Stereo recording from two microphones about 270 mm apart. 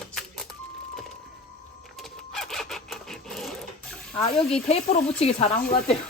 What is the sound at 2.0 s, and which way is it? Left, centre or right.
Sewing machine, centre.